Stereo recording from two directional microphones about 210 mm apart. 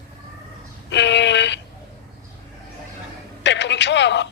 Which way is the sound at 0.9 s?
55° left (ahead or behind).